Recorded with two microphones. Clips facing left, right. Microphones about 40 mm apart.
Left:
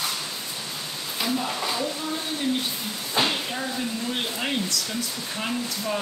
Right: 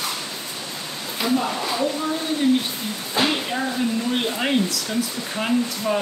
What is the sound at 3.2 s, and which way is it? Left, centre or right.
Speech, centre.